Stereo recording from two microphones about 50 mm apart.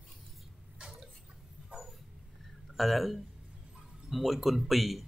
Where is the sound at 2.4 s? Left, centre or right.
Centre.